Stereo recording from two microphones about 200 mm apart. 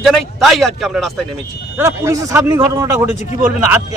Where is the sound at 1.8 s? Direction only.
15° right (ahead or behind).